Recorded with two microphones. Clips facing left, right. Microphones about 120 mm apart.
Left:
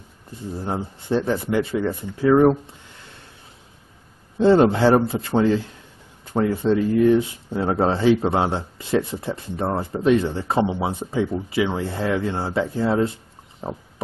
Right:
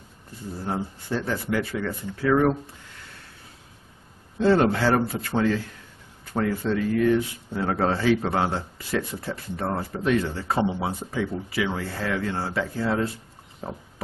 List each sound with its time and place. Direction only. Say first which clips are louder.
0.7 s speech: left 4 dB; 25° left (ahead or behind)
4.4 s speech: left 5 dB; 20° left (ahead or behind)
13.6 s a sound: left 4 dB; 20° left (ahead or behind)